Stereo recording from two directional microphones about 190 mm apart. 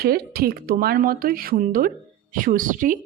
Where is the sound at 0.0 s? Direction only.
55° right (ahead or behind).